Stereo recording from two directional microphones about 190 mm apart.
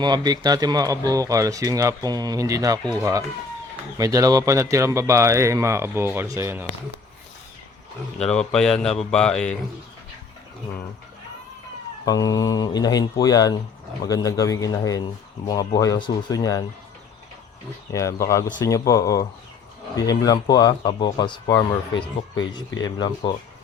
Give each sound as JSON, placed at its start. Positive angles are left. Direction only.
{"t": 0.0, "sound": "speech", "side_deg": -20}
{"t": 8.2, "sound": "speech", "side_deg": 5}
{"t": 12.0, "sound": "a man's voice", "side_deg": 20}
{"t": 17.9, "sound": "a man's voice", "side_deg": 15}
{"t": 22.8, "sound": "speech", "side_deg": 20}